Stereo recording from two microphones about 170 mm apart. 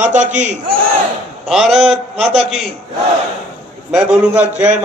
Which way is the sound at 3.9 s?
5° right (ahead or behind).